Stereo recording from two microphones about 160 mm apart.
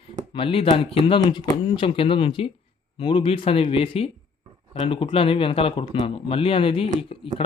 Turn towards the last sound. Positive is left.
turn(degrees=35)  # may be behind; listen again after turning